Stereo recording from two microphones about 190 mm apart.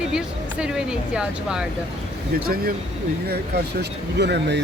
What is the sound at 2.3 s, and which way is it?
Speech, 55° right (ahead or behind).